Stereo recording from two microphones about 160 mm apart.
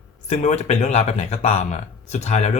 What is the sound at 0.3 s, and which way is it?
Speech, 45° left (ahead or behind).